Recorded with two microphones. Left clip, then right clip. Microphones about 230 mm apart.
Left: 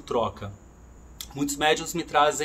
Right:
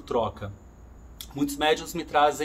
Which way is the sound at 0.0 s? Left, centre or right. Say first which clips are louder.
Even; centre.